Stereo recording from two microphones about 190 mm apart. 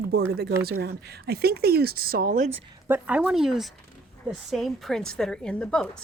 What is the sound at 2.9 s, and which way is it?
A woman's voice, 10° right (ahead or behind).